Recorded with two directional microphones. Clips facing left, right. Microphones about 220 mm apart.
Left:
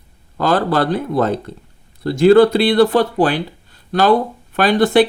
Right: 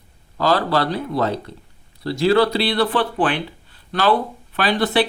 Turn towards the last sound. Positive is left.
turn(degrees=45)  # may be behind; listen again after turning